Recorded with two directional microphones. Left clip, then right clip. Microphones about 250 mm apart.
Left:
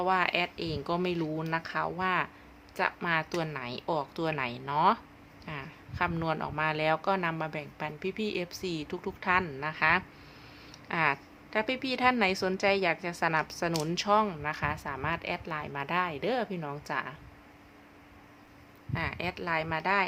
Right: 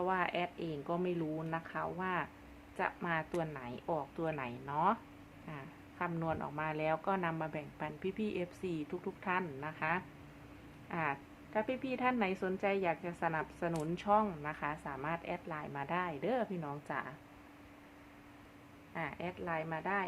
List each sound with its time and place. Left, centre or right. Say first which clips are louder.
0.0 s a woman's voice: left 7 dB; centre
18.9 s a woman's voice: left 7 dB; centre